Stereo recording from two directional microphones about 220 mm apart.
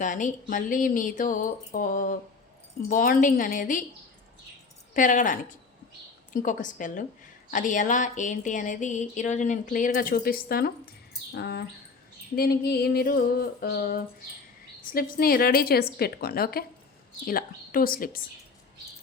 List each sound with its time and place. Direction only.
0.0 s speech: 35° left (ahead or behind)
4.9 s a woman's voice: 35° left (ahead or behind)